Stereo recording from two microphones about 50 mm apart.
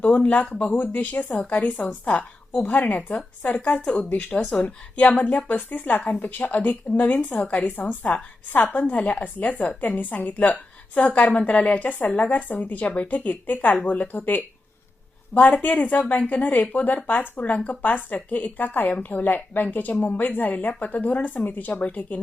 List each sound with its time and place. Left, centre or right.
0.0 s a woman's voice: left
6.0 s a woman's voice: centre
6.2 s a woman's voice: left